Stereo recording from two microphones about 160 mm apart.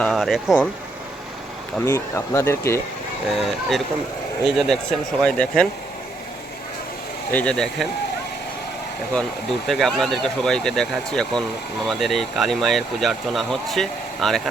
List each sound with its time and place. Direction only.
0.0 s speech: centre (ahead or behind)
1.8 s speech: 20° left (ahead or behind)
3.3 s speech: centre (ahead or behind)
7.3 s speech: 10° left (ahead or behind)
9.6 s speech: centre (ahead or behind)